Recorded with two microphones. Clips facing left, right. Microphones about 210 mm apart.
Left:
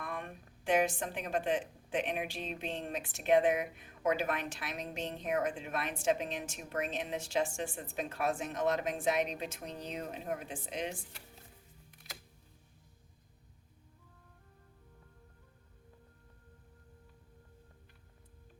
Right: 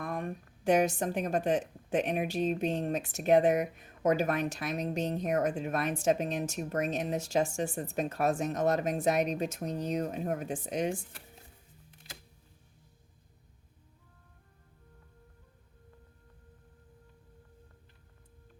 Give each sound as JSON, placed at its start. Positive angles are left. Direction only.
{"t": 0.0, "sound": "speech", "side_deg": -40}